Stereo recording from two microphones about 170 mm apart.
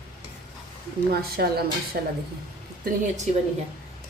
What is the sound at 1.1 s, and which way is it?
Speech, 65° right (ahead or behind).